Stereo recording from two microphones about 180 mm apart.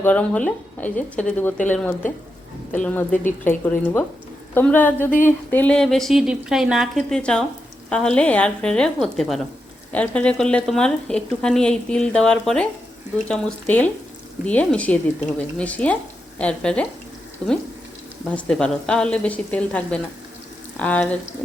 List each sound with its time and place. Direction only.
0.0 s a woman's voice: 5° left (ahead or behind)
18.3 s speech: 5° left (ahead or behind)